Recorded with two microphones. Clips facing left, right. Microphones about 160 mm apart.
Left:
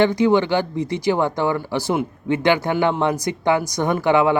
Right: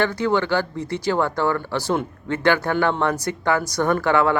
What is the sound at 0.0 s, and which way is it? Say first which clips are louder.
A man's voice: left 5 dB; 15° left (ahead or behind).